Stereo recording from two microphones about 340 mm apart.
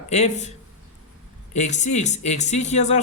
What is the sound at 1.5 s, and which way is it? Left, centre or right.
Speech, centre.